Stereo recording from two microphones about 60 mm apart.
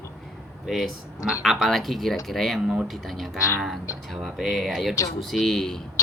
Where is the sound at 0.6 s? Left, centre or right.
Centre.